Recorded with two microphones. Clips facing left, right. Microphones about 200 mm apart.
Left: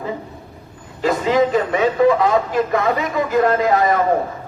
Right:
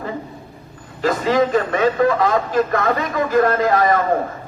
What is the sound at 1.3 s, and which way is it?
A man's voice, 10° left (ahead or behind).